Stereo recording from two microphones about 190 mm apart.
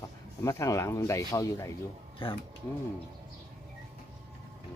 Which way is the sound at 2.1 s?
25° left (ahead or behind).